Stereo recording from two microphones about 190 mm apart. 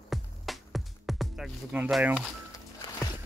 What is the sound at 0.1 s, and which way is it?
Music, centre (ahead or behind).